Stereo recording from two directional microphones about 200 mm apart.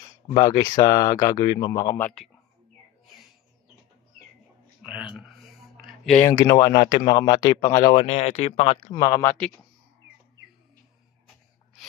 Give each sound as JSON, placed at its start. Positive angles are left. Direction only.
{"t": 0.3, "sound": "speech", "side_deg": 20}
{"t": 4.8, "sound": "speech", "side_deg": -5}
{"t": 5.8, "sound": "a sound", "side_deg": 0}
{"t": 6.2, "sound": "speech", "side_deg": 15}
{"t": 8.9, "sound": "speech", "side_deg": 20}